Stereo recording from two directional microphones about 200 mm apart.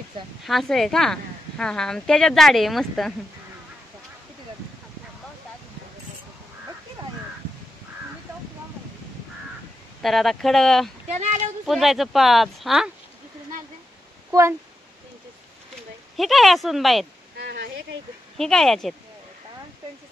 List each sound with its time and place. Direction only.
0.4 s a woman's voice: centre (ahead or behind)
10.0 s a woman's voice: centre (ahead or behind)
11.1 s a sound: 35° right (ahead or behind)
11.6 s a woman's voice: centre (ahead or behind)
16.2 s a woman's voice: centre (ahead or behind)
17.4 s a sound: 55° right (ahead or behind)
18.4 s a woman's voice: centre (ahead or behind)